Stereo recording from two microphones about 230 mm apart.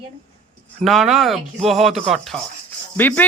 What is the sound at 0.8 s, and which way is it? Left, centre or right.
Speech, centre.